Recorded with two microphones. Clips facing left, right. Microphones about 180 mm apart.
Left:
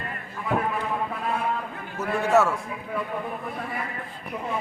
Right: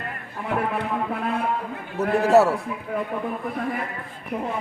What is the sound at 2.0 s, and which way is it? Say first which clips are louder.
Speech: right 4 dB; 35° right (ahead or behind).